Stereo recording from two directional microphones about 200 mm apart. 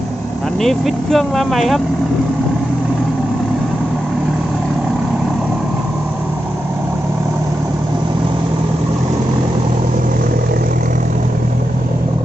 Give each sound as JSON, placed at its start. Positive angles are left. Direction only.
{"t": 0.6, "sound": "speech", "side_deg": 0}